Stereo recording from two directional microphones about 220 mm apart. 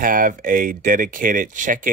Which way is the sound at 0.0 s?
40° right (ahead or behind).